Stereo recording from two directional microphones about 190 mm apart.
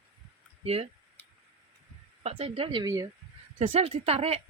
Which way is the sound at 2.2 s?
35° right (ahead or behind).